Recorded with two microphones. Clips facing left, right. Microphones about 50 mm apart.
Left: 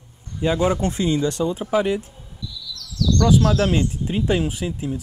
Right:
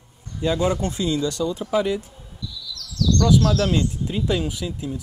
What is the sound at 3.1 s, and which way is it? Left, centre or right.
Speech, left.